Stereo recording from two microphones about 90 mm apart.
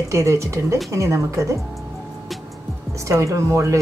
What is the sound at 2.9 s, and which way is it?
Speech, 35° right (ahead or behind).